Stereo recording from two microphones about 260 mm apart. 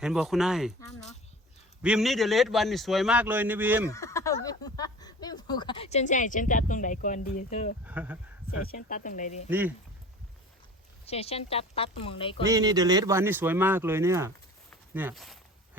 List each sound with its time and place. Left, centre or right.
0.0 s a man's voice: centre
1.8 s a man's voice: centre
3.8 s a sound: centre; by 7.8 s left
7.9 s a man's voice: centre
8.6 s speech: left
9.5 s speech: centre
11.0 s speech: left
12.5 s a man's voice: centre